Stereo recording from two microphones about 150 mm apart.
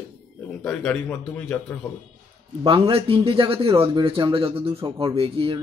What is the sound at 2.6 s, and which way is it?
Speech, 40° right (ahead or behind).